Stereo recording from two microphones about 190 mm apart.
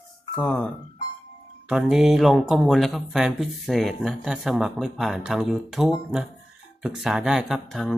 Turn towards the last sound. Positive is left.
turn(degrees=0)  # may be behind; listen again after turning